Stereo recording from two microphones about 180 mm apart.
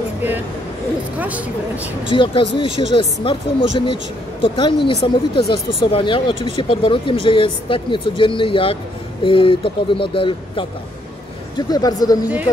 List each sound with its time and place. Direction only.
2.0 s a woman's voice: 30° left (ahead or behind)